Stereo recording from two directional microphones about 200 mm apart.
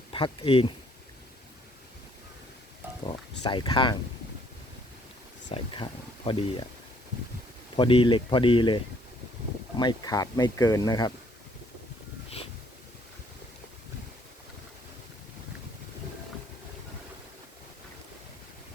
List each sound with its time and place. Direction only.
0.1 s speech: 25° left (ahead or behind)
3.1 s speech: 20° left (ahead or behind)
5.5 s speech: 25° left (ahead or behind)
7.8 s speech: 25° left (ahead or behind)